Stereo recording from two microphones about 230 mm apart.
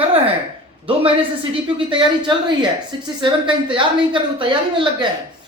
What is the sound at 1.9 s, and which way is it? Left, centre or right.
A woman's voice, right.